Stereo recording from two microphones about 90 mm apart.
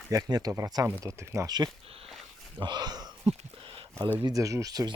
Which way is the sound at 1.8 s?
90° right.